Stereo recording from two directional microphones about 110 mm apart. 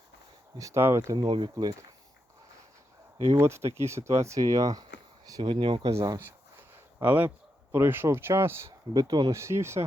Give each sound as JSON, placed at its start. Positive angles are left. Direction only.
{"t": 0.6, "sound": "speech", "side_deg": -25}
{"t": 1.1, "sound": "speech", "side_deg": -45}
{"t": 3.3, "sound": "speech", "side_deg": -25}
{"t": 5.4, "sound": "speech", "side_deg": -50}
{"t": 7.0, "sound": "speech", "side_deg": -15}
{"t": 9.0, "sound": "speech", "side_deg": -35}
{"t": 9.3, "sound": "speech", "side_deg": -25}